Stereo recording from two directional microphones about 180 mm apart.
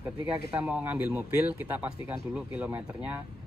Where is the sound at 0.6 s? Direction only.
10° right (ahead or behind).